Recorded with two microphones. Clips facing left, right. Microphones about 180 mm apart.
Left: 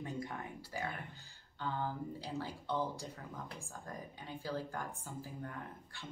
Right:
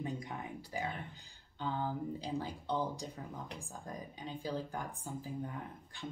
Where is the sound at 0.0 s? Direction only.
15° right (ahead or behind).